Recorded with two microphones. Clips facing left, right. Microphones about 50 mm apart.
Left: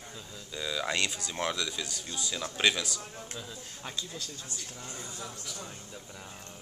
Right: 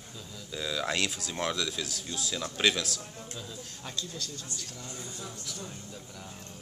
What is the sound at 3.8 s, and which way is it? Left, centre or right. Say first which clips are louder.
Speech: even; centre.